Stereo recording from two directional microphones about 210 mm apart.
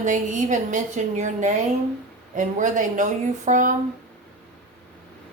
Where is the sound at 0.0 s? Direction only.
35° right (ahead or behind).